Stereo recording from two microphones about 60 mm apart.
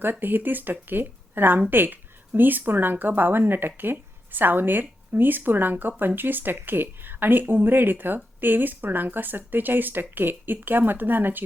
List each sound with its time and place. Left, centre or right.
0.0 s a woman's voice: right